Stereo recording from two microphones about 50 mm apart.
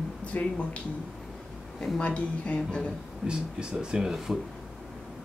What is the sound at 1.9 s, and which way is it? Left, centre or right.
Speech, left.